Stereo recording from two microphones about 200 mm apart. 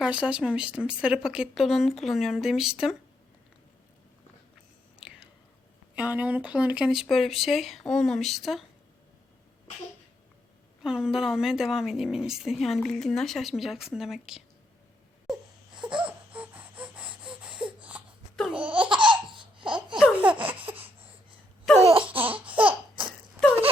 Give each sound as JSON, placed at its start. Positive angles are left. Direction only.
{"t": 0.0, "sound": "a woman's voice", "side_deg": -5}
{"t": 4.9, "sound": "whispering", "side_deg": -5}
{"t": 6.0, "sound": "a woman's voice", "side_deg": -5}
{"t": 10.8, "sound": "a woman's voice", "side_deg": -5}
{"t": 15.3, "sound": "a sound", "side_deg": -5}
{"t": 16.0, "sound": "wheeze", "side_deg": -5}
{"t": 18.9, "sound": "laughter", "side_deg": -25}
{"t": 20.0, "sound": "laughter", "side_deg": -5}
{"t": 20.4, "sound": "a sound", "side_deg": -25}
{"t": 22.5, "sound": "laughter", "side_deg": -25}